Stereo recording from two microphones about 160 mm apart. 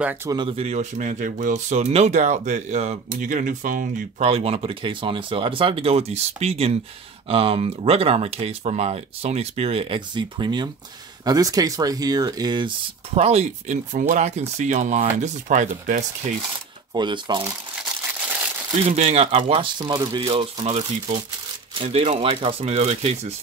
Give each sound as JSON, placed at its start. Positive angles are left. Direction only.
{"t": 0.0, "sound": "speech", "side_deg": -10}
{"t": 0.3, "sound": "speech", "side_deg": -30}
{"t": 4.2, "sound": "speech", "side_deg": -40}
{"t": 16.9, "sound": "speech", "side_deg": -30}
{"t": 18.9, "sound": "speech", "side_deg": -40}